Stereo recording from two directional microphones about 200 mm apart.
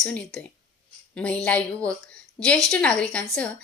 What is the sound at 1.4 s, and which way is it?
A woman's voice, 5° left (ahead or behind).